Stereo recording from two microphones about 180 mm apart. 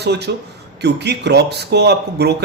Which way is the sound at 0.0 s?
70° right (ahead or behind).